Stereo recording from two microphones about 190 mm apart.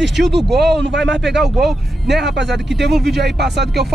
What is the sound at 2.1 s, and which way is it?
Speech, 65° right (ahead or behind).